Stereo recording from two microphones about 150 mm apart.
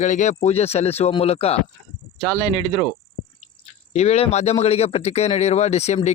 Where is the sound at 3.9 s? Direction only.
45° left (ahead or behind).